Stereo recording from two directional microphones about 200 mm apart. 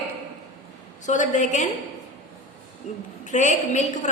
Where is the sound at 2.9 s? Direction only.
35° left (ahead or behind).